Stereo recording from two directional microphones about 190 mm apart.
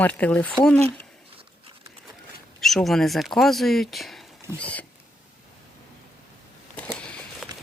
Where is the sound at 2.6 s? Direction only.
Centre (ahead or behind).